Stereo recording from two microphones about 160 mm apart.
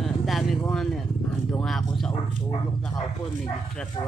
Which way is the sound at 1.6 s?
Centre (ahead or behind).